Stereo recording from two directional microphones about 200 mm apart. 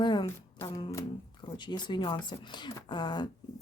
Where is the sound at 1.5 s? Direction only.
20° left (ahead or behind).